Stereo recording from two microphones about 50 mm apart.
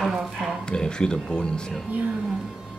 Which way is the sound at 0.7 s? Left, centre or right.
Centre.